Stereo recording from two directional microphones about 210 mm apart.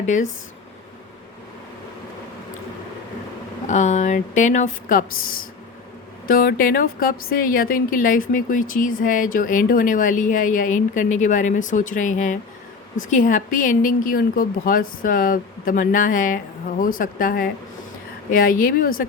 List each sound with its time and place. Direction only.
3.7 s a woman's voice: 35° left (ahead or behind)